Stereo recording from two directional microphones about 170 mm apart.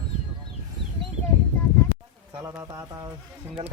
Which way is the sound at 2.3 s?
15° right (ahead or behind).